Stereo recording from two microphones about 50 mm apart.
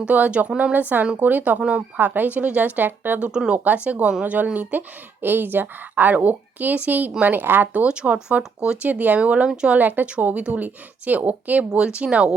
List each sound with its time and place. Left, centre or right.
0.0 s speech: right
2.0 s a woman's voice: right
3.3 s speech: centre
3.6 s a woman's voice: right
5.2 s a woman's voice: right
7.7 s speech: right
8.9 s speech: right
9.5 s speech: centre
9.7 s a woman's voice: right
11.8 s speech: centre